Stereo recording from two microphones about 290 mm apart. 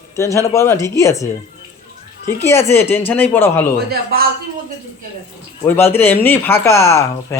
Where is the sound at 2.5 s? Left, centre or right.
Centre.